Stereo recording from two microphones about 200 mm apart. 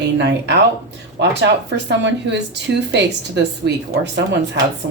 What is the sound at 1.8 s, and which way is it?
Speech, 60° right (ahead or behind).